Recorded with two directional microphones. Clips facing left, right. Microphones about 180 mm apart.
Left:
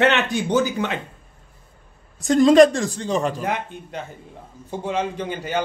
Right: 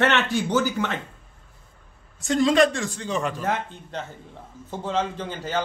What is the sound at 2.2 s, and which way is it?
A man's voice, 45° left (ahead or behind).